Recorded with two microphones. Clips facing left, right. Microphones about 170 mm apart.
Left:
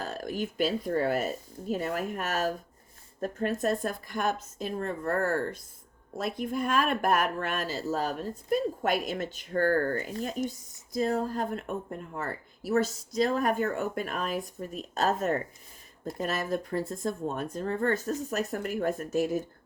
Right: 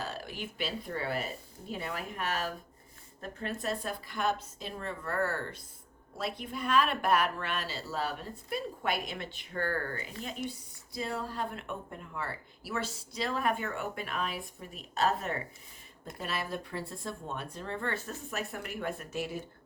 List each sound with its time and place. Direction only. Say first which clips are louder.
0.0 s speech: left 6 dB; 45° left (ahead or behind)